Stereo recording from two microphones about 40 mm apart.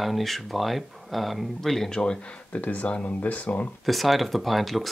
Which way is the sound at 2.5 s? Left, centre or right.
Left.